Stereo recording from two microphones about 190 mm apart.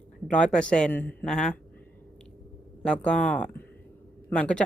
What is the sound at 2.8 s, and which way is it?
Speech, 5° left (ahead or behind).